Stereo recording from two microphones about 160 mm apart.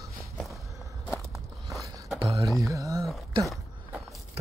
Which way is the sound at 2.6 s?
20° right (ahead or behind).